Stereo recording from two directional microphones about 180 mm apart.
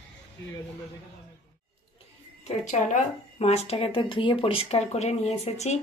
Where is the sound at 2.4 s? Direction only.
40° left (ahead or behind).